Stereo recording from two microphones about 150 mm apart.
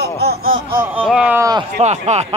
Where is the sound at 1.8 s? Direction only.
50° right (ahead or behind).